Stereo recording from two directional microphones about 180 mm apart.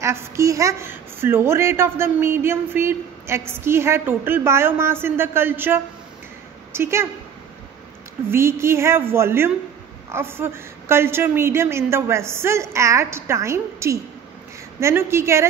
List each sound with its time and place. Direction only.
0.0 s a woman's voice: 15° right (ahead or behind)
8.3 s speech: 15° right (ahead or behind)